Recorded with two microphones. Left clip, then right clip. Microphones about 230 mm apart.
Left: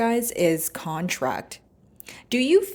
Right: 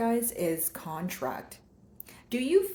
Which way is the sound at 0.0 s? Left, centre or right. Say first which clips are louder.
Left 7 dB; left.